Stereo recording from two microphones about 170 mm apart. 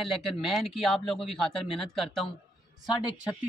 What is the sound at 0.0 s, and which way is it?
A man's voice, centre (ahead or behind).